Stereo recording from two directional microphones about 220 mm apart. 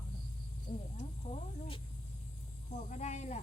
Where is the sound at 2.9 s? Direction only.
30° left (ahead or behind).